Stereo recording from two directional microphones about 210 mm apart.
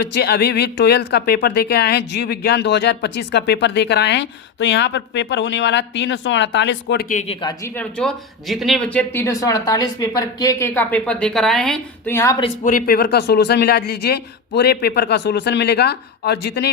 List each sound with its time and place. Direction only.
0.0 s speech: 50° left (ahead or behind)
7.4 s speech: 15° left (ahead or behind)
7.9 s speech: centre (ahead or behind)
12.6 s speech: 45° left (ahead or behind)